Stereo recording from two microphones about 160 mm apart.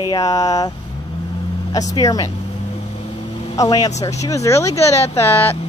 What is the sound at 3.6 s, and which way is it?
Speech, 25° left (ahead or behind).